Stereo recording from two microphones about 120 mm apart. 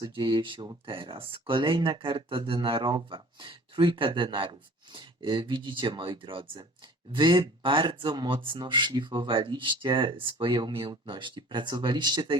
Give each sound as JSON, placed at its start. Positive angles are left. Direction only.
{"t": 0.0, "sound": "speech", "side_deg": -40}